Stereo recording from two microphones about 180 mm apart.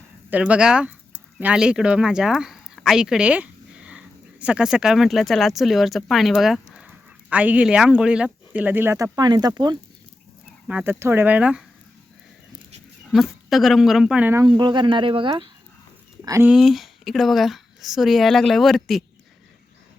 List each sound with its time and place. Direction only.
0.3 s speech: 10° right (ahead or behind)
10.7 s speech: 10° right (ahead or behind)
13.1 s speech: centre (ahead or behind)
14.6 s speech: 25° right (ahead or behind)
16.2 s speech: 15° right (ahead or behind)
16.5 s speech: centre (ahead or behind)